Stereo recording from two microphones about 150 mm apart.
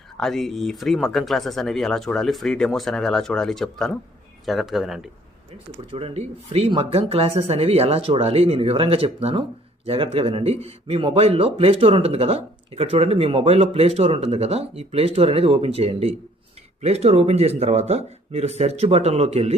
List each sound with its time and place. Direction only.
0.2 s speech: centre (ahead or behind)
5.9 s speech: 40° right (ahead or behind)